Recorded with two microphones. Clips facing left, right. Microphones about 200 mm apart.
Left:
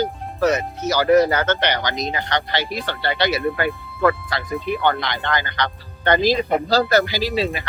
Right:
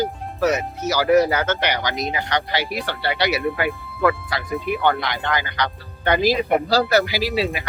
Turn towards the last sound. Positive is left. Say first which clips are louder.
# even
turn(degrees=-10)  # may be behind; listen again after turning